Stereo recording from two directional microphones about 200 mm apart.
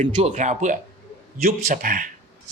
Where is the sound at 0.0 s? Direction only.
35° right (ahead or behind).